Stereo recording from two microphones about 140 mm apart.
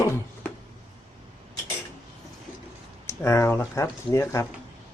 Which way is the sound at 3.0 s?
20° left (ahead or behind).